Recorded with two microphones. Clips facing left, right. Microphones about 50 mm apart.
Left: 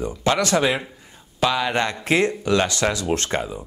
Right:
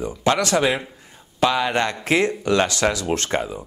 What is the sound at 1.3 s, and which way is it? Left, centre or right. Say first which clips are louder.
Speech: right 1 dB; centre.